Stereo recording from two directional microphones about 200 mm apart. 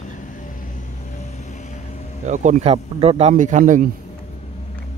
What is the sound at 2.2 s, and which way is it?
Speech, 35° right (ahead or behind).